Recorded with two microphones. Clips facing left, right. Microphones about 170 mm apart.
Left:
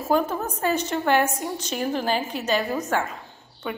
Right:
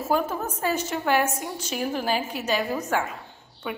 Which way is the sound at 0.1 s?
5° right (ahead or behind).